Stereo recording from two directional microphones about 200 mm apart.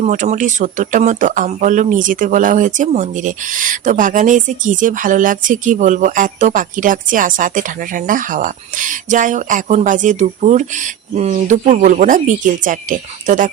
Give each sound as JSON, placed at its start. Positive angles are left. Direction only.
{"t": 0.0, "sound": "speech", "side_deg": -35}